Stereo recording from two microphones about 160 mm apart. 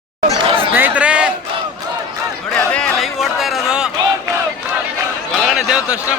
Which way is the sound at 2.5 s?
5° left (ahead or behind).